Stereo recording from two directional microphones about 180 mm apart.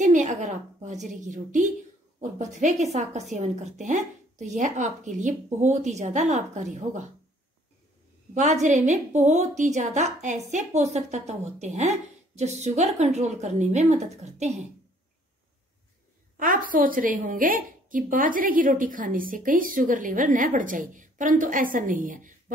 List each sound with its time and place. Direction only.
0.0 s a woman's voice: 45° right (ahead or behind)
8.4 s a woman's voice: 40° right (ahead or behind)
16.3 s a woman's voice: 50° right (ahead or behind)